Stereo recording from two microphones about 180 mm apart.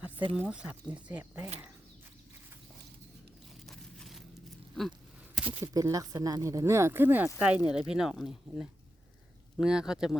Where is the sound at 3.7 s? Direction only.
Centre (ahead or behind).